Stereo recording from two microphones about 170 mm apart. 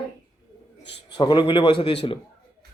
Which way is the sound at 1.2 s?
25° left (ahead or behind).